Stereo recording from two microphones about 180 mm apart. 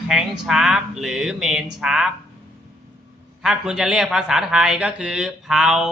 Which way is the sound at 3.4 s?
5° right (ahead or behind).